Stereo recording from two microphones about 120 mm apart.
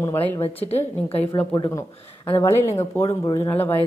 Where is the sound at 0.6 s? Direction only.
55° left (ahead or behind).